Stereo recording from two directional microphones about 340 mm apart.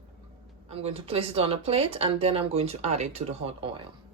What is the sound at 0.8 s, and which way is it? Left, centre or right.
Speech, centre.